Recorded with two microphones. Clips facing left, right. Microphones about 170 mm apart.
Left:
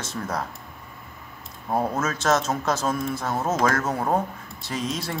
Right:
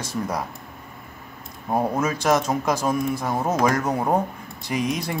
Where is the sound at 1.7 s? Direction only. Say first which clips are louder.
Right 2 dB; 15° right (ahead or behind).